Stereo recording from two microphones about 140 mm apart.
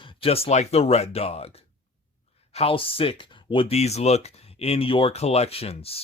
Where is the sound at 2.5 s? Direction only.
45° left (ahead or behind).